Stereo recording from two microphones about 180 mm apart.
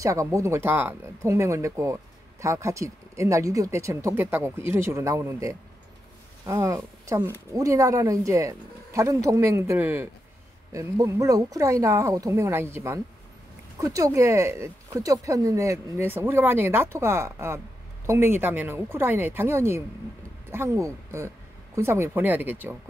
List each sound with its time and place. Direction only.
0.0 s speech: 15° right (ahead or behind)